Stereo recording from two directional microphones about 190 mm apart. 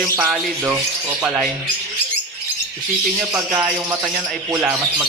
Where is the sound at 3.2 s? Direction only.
5° right (ahead or behind).